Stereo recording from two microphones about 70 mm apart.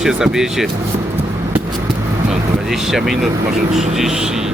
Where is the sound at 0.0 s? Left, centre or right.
Centre.